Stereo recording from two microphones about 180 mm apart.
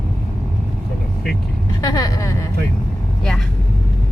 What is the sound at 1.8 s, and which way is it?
Speech, 20° left (ahead or behind).